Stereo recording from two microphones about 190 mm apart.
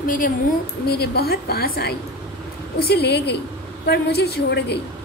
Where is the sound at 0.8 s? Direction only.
55° left (ahead or behind).